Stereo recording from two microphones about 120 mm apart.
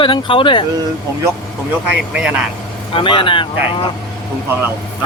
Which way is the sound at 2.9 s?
45° left (ahead or behind).